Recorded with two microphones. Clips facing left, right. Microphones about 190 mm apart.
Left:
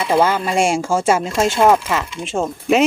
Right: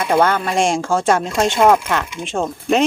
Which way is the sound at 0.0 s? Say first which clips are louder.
Even; 5° left (ahead or behind).